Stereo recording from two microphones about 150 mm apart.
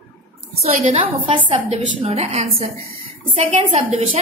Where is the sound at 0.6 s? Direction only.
45° right (ahead or behind).